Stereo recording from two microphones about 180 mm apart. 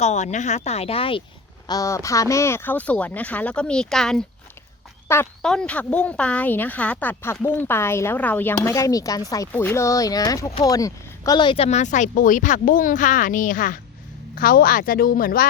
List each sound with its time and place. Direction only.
0.0 s speech: 40° left (ahead or behind)
1.6 s speech: 20° left (ahead or behind); by 4.2 s centre (ahead or behind)
5.0 s speech: 15° left (ahead or behind); by 15.4 s 55° left (ahead or behind)